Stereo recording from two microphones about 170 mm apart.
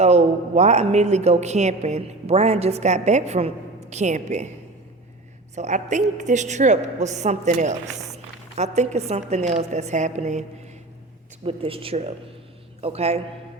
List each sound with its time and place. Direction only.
0.0 s a woman's voice: 40° right (ahead or behind)
5.5 s a woman's voice: 45° right (ahead or behind)
11.4 s a woman's voice: 35° right (ahead or behind)